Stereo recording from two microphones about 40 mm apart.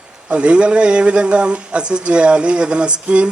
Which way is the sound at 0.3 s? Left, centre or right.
Right.